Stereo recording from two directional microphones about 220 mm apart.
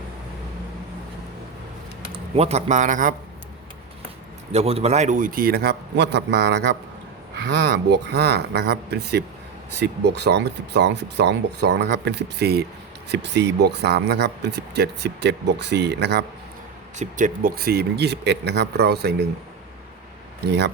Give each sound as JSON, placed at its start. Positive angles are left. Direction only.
{"t": 2.3, "sound": "a man's voice", "side_deg": -30}
{"t": 4.5, "sound": "speech", "side_deg": -30}
{"t": 17.0, "sound": "speech", "side_deg": -35}